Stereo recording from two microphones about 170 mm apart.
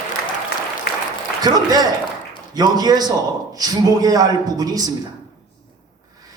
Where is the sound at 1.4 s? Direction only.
25° right (ahead or behind).